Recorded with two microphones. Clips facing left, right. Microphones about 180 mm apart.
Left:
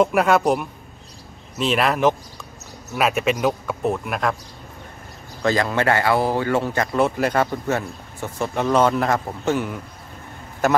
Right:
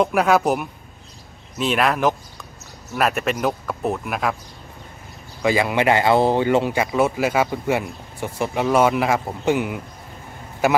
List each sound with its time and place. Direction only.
0.0 s speech: centre (ahead or behind)
1.6 s speech: centre (ahead or behind)
5.4 s speech: 10° right (ahead or behind)